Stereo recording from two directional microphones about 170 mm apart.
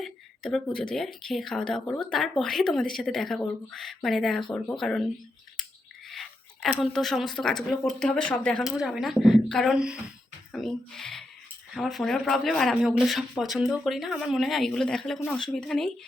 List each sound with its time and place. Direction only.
0.0 s speech: 5° left (ahead or behind)
6.1 s speech: centre (ahead or behind)
8.6 s speech: centre (ahead or behind)